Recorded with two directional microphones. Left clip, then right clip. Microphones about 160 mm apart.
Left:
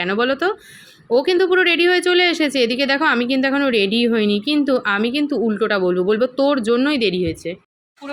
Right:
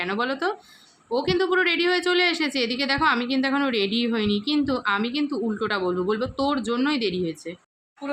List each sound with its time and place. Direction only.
0.0 s speech: 25° left (ahead or behind)